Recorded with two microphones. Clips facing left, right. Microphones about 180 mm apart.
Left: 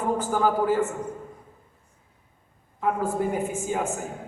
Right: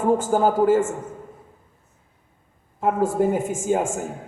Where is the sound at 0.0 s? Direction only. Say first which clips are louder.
Right 5 dB; 45° right (ahead or behind).